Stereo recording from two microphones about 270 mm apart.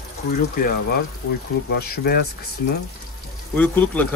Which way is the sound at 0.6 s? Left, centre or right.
Left.